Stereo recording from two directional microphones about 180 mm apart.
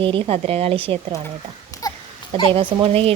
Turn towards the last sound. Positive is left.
turn(degrees=-30)  # may be behind; listen again after turning